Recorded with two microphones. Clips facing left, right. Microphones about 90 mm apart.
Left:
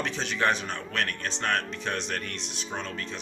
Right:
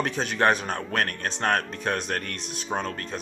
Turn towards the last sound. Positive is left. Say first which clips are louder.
# right 5 dB
turn(degrees=-45)  # may be behind; listen again after turning